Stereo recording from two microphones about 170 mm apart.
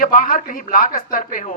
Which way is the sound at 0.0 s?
55° left (ahead or behind).